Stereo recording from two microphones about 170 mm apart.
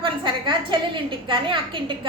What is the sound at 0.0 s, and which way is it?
A woman's voice, 30° right (ahead or behind).